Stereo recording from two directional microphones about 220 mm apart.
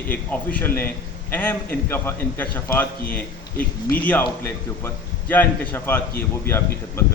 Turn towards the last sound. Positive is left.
turn(degrees=10)  # may be behind; listen again after turning